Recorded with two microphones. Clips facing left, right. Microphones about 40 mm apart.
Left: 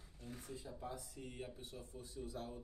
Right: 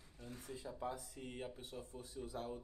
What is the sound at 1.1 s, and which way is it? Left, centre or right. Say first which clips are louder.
Speech: right 2 dB; right.